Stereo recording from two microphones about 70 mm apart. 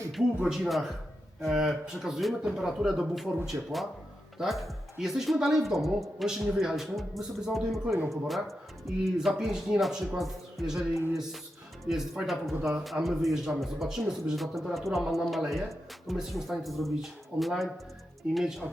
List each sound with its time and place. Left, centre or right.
0.4 s a man's voice: centre